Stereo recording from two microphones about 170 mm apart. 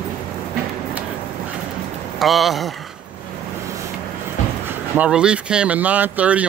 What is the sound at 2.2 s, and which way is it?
Speech, centre (ahead or behind).